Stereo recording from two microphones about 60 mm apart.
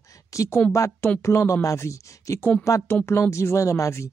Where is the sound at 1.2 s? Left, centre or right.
Left.